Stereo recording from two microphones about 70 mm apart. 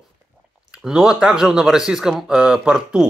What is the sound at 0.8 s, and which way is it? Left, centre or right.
Speech, centre.